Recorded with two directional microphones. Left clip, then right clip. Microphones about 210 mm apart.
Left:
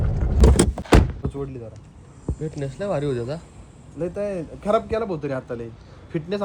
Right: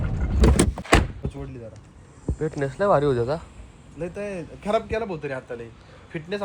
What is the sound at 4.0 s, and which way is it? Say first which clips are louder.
Speech: left 5 dB; 50° left (ahead or behind).